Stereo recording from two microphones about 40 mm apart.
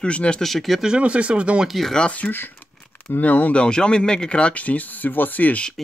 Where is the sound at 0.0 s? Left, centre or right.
Left.